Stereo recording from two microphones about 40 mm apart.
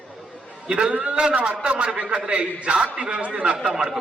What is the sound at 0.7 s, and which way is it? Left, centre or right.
A man's voice, right.